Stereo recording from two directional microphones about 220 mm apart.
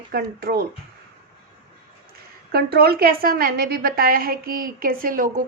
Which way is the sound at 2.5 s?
45° right (ahead or behind).